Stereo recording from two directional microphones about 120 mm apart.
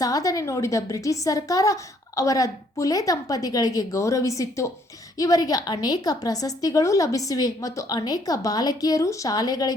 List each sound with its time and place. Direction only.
0.0 s a woman's voice: 30° left (ahead or behind)